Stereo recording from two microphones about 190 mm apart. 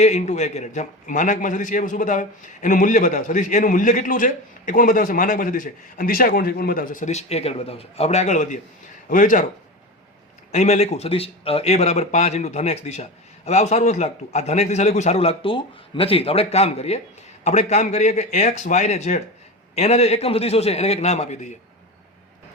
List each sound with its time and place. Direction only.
0.0 s a man's voice: 35° left (ahead or behind)
10.5 s speech: 35° left (ahead or behind)